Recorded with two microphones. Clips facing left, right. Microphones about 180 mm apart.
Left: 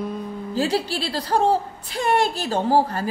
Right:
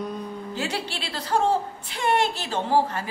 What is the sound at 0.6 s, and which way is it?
Speech, 35° left (ahead or behind).